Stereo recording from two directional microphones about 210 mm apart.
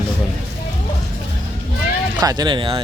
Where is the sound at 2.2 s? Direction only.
20° right (ahead or behind).